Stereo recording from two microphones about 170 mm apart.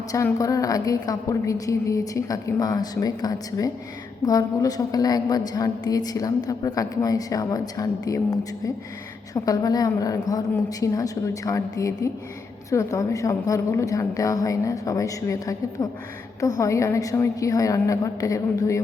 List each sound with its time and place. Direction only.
0.1 s a woman's voice: 20° left (ahead or behind)